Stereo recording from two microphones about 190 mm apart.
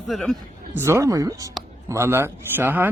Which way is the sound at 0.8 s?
15° right (ahead or behind).